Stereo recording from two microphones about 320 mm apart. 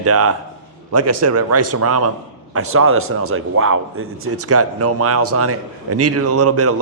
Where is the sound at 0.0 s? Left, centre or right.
Right.